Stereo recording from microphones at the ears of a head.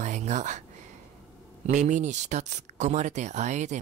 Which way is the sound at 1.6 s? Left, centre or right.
Right.